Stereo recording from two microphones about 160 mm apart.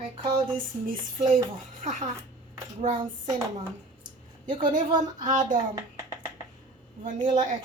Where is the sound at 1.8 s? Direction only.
50° right (ahead or behind).